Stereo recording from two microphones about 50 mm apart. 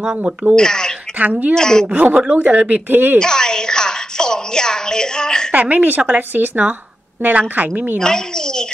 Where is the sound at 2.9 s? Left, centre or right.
Right.